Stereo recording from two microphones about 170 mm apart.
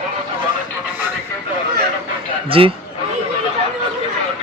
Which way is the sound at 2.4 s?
30° right (ahead or behind).